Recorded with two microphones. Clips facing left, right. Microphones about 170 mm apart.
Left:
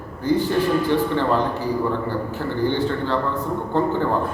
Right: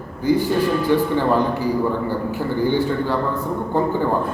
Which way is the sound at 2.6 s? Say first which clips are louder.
Right 2 dB; 10° right (ahead or behind).